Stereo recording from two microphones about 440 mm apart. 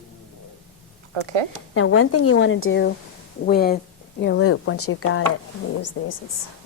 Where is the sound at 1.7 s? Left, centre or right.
Left.